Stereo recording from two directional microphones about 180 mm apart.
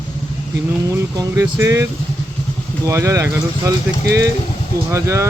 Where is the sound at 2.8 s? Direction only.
15° right (ahead or behind).